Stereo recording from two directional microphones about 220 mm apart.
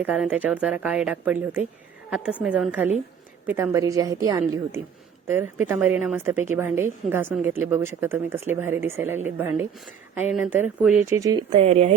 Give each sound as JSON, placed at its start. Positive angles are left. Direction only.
{"t": 0.0, "sound": "a woman's voice", "side_deg": -5}
{"t": 11.5, "sound": "a woman's voice", "side_deg": -30}